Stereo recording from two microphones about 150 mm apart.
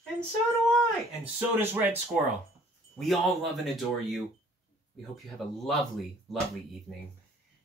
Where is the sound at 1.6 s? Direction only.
15° right (ahead or behind).